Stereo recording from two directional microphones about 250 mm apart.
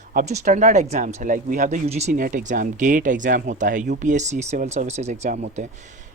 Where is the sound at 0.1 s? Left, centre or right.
Right.